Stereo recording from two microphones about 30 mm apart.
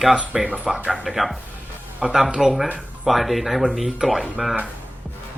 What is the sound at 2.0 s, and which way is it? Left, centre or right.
Speech, right.